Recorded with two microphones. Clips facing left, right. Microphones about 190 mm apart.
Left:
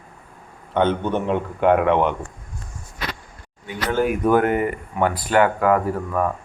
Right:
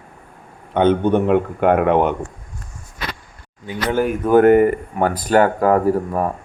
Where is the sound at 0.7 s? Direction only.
55° right (ahead or behind).